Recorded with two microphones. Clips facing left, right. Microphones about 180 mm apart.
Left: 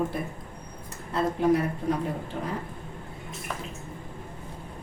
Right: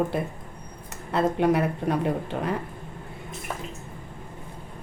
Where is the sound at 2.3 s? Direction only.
90° right.